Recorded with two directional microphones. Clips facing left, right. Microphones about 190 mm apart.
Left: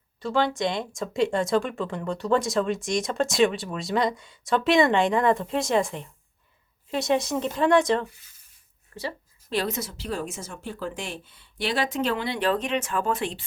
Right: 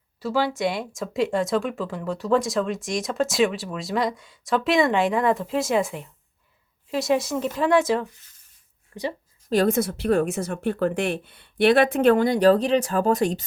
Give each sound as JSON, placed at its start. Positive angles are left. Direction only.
{"t": 0.2, "sound": "speech", "side_deg": -5}
{"t": 9.5, "sound": "a woman's voice", "side_deg": -45}